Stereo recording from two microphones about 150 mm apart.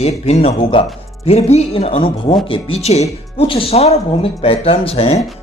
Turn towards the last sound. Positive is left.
turn(degrees=40)  # may be behind; listen again after turning